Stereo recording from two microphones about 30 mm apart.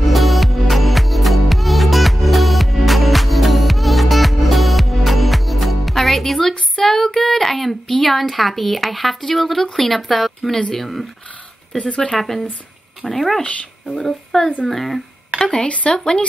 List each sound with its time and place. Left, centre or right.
0.0 s music: centre
7.2 s speech: centre
11.8 s speech: left
12.2 s speech: centre
14.7 s a sound: centre
15.4 s speech: left